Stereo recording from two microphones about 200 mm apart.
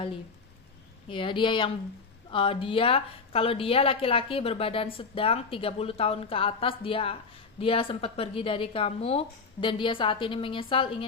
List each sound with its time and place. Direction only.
1.0 s a woman's voice: 25° left (ahead or behind)